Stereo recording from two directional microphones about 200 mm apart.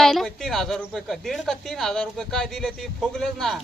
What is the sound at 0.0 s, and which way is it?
A woman's voice, centre (ahead or behind).